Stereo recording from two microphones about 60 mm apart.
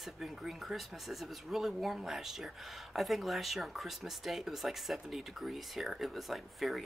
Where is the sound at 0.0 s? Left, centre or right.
Centre.